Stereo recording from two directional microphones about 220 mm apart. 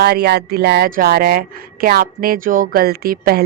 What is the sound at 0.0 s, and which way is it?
A woman's voice, 45° right (ahead or behind).